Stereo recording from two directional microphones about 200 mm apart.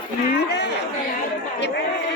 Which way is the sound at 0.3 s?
55° left (ahead or behind).